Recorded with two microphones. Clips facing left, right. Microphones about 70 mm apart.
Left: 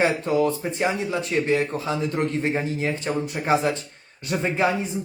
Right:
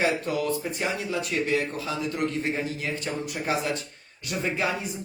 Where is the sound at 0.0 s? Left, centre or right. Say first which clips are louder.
Left 5 dB; left.